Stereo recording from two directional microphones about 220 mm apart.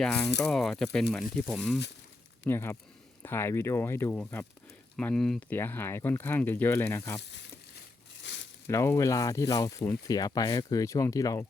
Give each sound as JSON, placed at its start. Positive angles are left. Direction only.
{"t": 0.0, "sound": "speech", "side_deg": 5}
{"t": 2.5, "sound": "speech", "side_deg": 10}
{"t": 7.2, "sound": "speech", "side_deg": 50}
{"t": 8.2, "sound": "a sound", "side_deg": 55}
{"t": 8.6, "sound": "speech", "side_deg": 10}